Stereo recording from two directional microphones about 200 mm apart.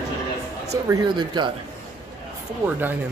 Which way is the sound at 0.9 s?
20° right (ahead or behind).